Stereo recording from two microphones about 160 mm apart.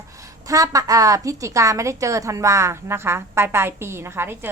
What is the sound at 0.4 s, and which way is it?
A woman's voice, 20° right (ahead or behind).